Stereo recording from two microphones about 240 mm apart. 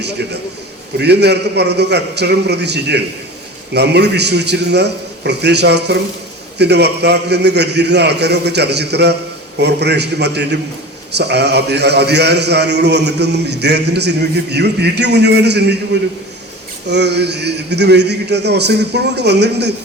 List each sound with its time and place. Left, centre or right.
0.9 s a man's voice: right